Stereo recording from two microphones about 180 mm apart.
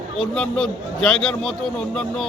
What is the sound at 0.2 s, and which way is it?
A man's voice, 5° left (ahead or behind).